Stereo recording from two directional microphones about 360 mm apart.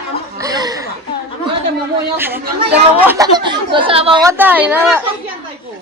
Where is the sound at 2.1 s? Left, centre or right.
Centre.